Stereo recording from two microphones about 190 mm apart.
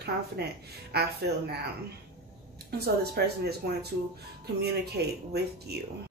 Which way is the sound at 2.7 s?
55° right (ahead or behind).